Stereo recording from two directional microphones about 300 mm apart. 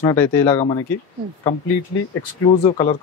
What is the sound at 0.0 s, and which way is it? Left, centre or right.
Speech, centre.